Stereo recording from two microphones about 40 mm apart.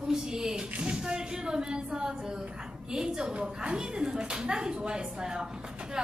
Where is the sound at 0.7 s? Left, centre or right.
Right.